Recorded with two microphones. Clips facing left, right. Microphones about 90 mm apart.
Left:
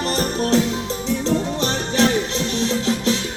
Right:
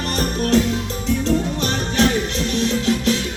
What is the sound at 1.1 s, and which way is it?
Music, 25° left (ahead or behind).